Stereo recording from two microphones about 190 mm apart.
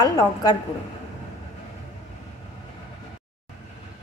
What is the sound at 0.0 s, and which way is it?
Speech, 20° left (ahead or behind).